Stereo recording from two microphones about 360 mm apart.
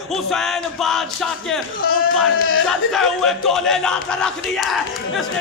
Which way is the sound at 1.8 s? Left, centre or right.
Left.